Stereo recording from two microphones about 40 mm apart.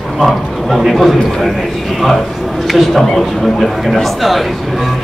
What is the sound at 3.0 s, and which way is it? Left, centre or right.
A man's voice, centre.